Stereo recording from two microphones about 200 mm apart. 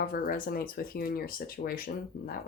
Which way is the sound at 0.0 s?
45° left (ahead or behind).